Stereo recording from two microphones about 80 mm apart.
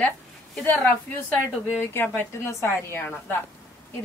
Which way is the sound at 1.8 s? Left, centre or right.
Left.